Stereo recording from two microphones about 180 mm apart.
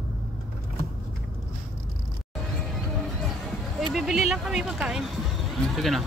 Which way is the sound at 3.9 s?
Centre (ahead or behind).